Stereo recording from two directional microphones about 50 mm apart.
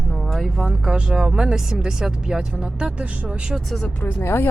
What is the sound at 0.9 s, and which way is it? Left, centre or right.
A woman's voice, centre.